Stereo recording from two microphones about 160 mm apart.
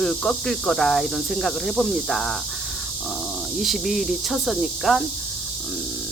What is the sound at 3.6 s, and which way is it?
Speech, centre (ahead or behind).